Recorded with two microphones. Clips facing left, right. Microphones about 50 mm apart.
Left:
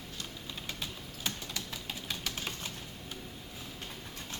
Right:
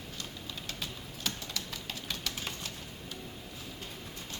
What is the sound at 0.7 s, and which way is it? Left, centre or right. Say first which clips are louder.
Typing: even; centre.